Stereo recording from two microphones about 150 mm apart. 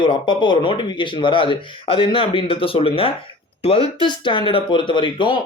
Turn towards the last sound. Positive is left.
turn(degrees=35)  # may be behind; listen again after turning